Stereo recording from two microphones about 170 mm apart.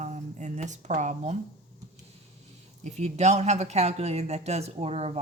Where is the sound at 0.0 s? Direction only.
45° right (ahead or behind).